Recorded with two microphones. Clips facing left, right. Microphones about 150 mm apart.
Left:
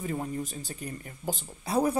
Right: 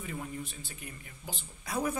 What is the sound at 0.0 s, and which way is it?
Speech, 40° left (ahead or behind).